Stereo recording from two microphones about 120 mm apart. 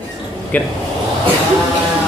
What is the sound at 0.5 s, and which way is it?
Speech, 15° left (ahead or behind).